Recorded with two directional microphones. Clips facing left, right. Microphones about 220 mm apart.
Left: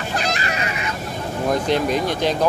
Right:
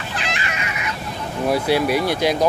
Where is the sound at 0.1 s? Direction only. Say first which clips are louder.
Left 4 dB; 40° left (ahead or behind).